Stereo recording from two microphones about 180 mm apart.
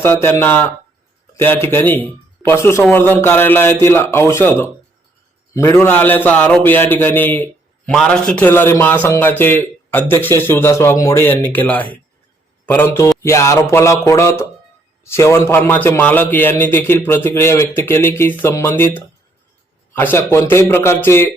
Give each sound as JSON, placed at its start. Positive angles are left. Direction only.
{"t": 0.0, "sound": "a man's voice", "side_deg": 15}